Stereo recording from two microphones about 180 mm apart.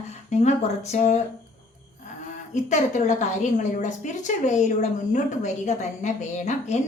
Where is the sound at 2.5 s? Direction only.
40° left (ahead or behind).